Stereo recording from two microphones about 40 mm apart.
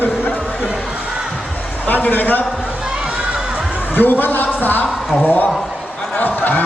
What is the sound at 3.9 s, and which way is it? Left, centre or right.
A man's voice, left.